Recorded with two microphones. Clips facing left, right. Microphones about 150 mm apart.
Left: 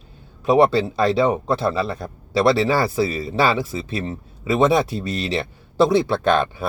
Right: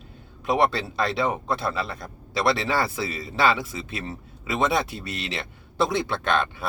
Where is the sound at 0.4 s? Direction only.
35° left (ahead or behind).